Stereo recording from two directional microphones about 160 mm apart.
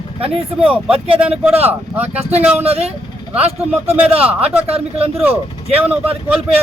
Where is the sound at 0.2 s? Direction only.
35° right (ahead or behind).